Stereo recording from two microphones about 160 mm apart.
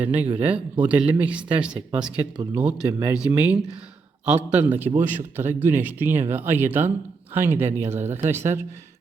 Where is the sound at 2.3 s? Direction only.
25° right (ahead or behind).